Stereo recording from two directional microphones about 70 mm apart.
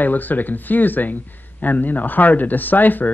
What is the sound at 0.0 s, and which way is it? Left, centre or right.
Speech, left.